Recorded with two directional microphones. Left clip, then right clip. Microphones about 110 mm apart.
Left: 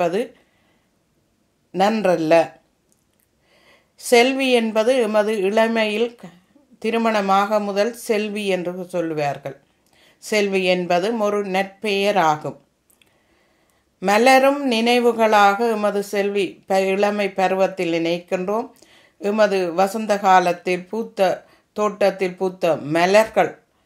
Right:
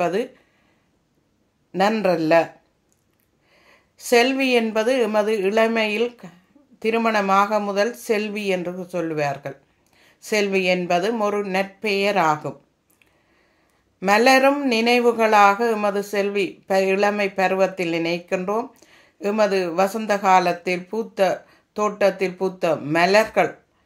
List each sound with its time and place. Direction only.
0.0 s speech: 15° left (ahead or behind)
1.7 s a man's voice: 15° left (ahead or behind)
3.5 s speech: 20° left (ahead or behind)
13.9 s speech: 15° left (ahead or behind)